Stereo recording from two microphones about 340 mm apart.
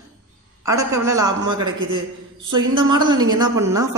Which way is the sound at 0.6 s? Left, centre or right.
Centre.